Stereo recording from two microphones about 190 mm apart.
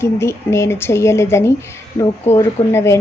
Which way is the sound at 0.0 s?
15° left (ahead or behind).